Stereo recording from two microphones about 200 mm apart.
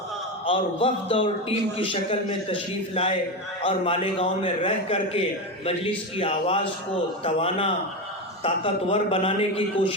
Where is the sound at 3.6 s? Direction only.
30° left (ahead or behind).